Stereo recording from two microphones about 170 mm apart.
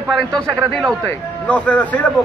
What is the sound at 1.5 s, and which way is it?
Speech, 5° left (ahead or behind).